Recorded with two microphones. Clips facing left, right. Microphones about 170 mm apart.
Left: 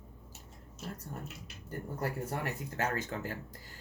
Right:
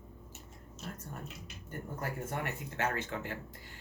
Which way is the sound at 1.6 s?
35° left (ahead or behind).